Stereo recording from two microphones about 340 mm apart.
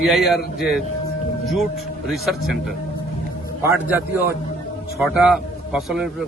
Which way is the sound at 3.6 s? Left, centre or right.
Centre.